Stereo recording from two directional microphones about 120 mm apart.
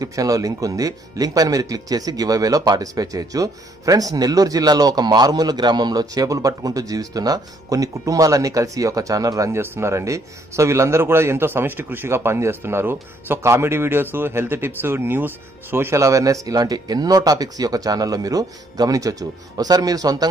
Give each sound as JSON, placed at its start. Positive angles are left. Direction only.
{"t": 0.0, "sound": "speech", "side_deg": -30}